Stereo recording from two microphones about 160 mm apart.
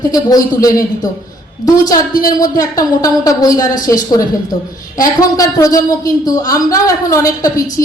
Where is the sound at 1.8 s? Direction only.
25° left (ahead or behind).